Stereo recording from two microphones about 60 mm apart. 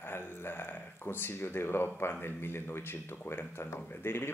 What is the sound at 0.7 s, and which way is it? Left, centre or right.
Speech, left.